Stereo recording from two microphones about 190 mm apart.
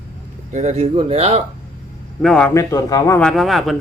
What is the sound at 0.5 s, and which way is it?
Speech, 35° right (ahead or behind).